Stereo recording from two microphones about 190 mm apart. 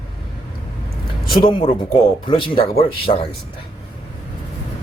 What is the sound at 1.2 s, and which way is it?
Speech, 25° left (ahead or behind).